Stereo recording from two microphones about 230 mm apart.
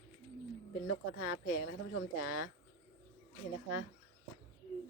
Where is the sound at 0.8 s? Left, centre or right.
Left.